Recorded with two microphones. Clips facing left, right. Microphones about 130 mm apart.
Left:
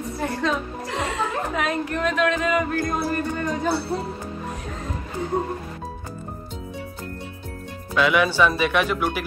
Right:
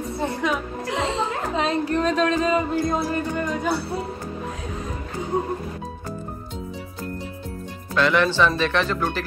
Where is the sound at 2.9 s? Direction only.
20° right (ahead or behind).